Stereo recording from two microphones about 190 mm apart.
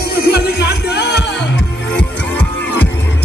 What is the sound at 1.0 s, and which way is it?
Music, 60° left (ahead or behind).